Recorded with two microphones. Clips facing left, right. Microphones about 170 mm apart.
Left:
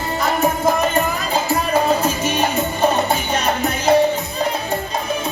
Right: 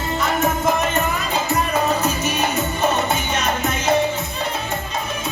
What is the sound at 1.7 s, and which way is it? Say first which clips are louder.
Music: left 6 dB; 30° left (ahead or behind).